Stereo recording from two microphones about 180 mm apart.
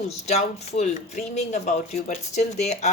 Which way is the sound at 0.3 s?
40° left (ahead or behind).